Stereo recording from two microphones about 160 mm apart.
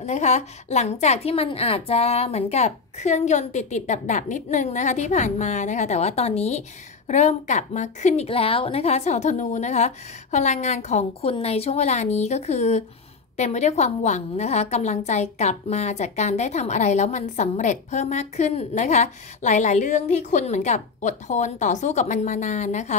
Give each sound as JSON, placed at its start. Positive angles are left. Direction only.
{"t": 0.0, "sound": "a woman's voice", "side_deg": 45}